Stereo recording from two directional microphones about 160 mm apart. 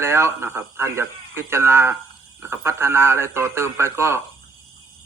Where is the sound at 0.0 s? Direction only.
15° right (ahead or behind).